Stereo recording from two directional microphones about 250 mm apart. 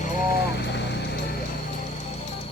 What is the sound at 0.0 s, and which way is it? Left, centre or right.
Vehicle, left.